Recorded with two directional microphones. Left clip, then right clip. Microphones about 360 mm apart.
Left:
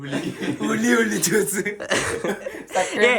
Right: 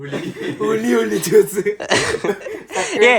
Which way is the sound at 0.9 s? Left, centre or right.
Centre.